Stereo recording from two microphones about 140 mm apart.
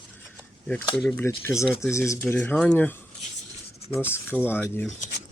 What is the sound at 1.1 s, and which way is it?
Speech, 15° left (ahead or behind).